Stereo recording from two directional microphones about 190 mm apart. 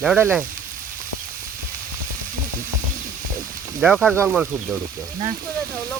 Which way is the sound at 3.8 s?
10° right (ahead or behind).